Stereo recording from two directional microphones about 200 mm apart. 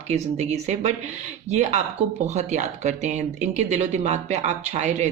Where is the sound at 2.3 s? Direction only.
35° right (ahead or behind).